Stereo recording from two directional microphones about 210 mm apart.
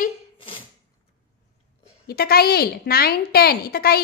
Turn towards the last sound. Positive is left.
turn(degrees=45)  # may be behind; listen again after turning